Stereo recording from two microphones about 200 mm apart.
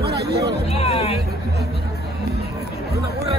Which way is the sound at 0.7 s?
30° left (ahead or behind).